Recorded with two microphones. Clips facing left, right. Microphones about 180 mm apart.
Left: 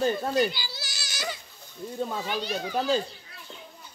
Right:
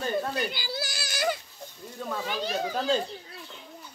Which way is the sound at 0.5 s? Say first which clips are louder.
Right 4 dB; 55° right (ahead or behind).